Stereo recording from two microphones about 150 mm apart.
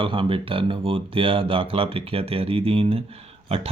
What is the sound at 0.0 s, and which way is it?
Speech, 35° right (ahead or behind).